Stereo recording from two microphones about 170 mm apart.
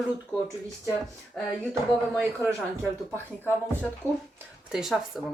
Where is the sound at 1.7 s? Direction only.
15° right (ahead or behind).